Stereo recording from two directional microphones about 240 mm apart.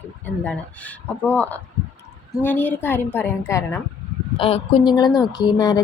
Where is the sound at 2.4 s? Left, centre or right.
Centre.